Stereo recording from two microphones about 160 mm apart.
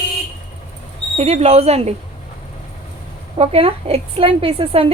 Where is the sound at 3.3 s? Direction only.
40° right (ahead or behind).